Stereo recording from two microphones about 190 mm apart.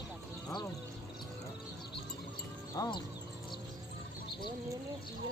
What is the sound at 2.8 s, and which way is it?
Speech, 25° left (ahead or behind).